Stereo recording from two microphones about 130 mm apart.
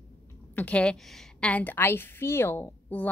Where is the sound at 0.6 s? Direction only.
10° left (ahead or behind).